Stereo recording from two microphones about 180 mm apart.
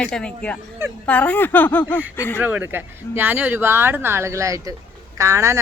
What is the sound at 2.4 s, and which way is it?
Speech, 10° right (ahead or behind).